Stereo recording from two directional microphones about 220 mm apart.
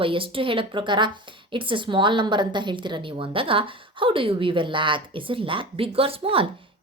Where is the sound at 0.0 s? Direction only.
25° right (ahead or behind).